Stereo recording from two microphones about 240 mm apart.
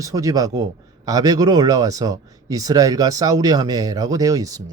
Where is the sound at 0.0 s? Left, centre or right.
Centre.